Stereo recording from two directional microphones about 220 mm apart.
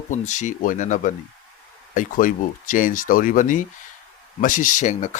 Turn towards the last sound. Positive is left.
turn(degrees=35)  # may be behind; listen again after turning